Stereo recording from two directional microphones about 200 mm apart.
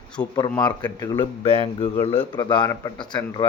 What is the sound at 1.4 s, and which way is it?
Speech, 30° left (ahead or behind).